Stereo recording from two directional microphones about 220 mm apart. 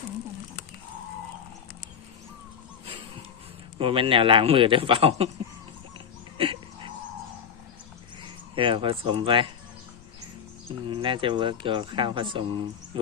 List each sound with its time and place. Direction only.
3.8 s speech: 25° right (ahead or behind)
6.3 s dog: 25° right (ahead or behind)
8.5 s speech: 25° right (ahead or behind)
10.8 s speech: 25° right (ahead or behind)